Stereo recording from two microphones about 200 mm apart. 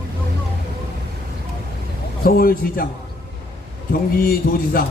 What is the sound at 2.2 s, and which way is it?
Speech, 45° left (ahead or behind).